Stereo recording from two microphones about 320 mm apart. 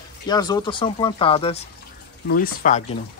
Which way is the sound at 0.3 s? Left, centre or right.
Centre.